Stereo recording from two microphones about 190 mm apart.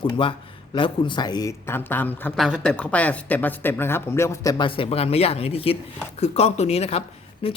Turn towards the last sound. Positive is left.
turn(degrees=30)  # may be behind; listen again after turning